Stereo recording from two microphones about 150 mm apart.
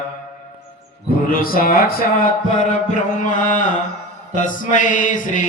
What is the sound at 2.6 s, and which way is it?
Mantra, 60° left (ahead or behind).